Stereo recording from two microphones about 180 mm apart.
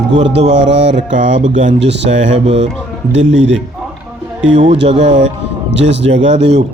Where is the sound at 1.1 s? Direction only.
85° right.